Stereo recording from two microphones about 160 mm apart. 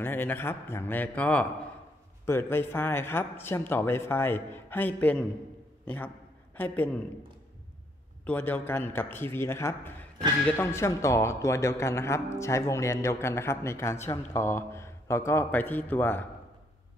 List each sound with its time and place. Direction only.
0.0 s speech: 10° left (ahead or behind)
5.9 s a sound: 10° left (ahead or behind)
8.3 s speech: 10° left (ahead or behind)